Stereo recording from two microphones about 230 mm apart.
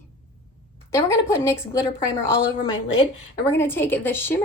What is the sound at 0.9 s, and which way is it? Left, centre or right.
A woman's voice, centre.